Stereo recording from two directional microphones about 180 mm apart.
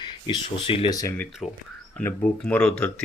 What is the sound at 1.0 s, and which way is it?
Speech, 15° left (ahead or behind).